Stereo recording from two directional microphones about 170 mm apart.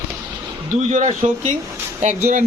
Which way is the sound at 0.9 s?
45° right (ahead or behind).